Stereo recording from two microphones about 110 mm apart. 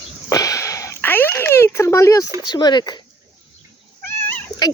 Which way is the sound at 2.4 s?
40° left (ahead or behind).